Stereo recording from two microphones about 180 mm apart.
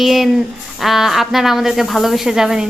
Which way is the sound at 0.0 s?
Centre (ahead or behind).